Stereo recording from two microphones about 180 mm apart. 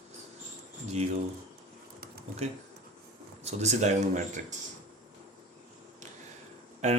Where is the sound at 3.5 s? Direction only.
40° right (ahead or behind).